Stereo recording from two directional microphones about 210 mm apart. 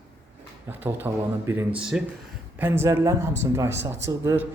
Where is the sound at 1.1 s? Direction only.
15° right (ahead or behind).